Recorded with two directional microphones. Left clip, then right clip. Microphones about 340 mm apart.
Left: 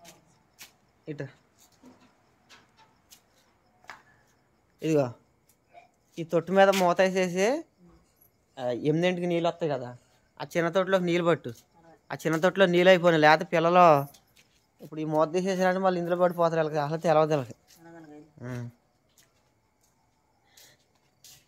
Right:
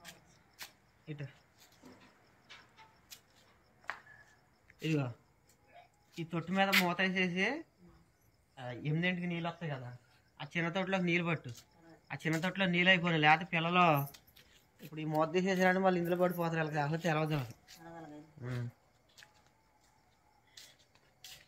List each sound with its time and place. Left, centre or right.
1.0 s speech: centre
4.8 s speech: centre
6.1 s speech: centre